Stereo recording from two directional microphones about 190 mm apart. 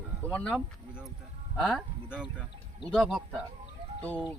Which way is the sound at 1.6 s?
Centre (ahead or behind).